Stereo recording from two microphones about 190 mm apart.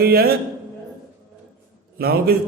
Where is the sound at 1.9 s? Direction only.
55° right (ahead or behind).